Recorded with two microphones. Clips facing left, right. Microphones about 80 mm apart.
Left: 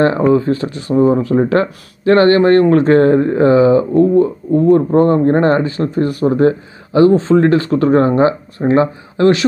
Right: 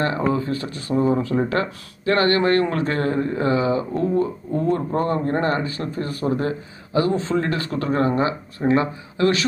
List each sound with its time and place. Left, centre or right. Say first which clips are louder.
0.0 s speech: left 10 dB; left
0.4 s speech: left 8 dB; left
1.3 s speech: left 8 dB; left
5.7 s speech: left 11 dB; left